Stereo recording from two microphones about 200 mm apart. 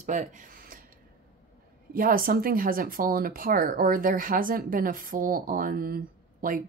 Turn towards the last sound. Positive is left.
turn(degrees=-45)  # may be behind; listen again after turning